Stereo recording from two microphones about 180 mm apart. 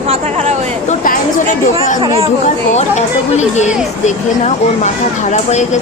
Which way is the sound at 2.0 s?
25° right (ahead or behind).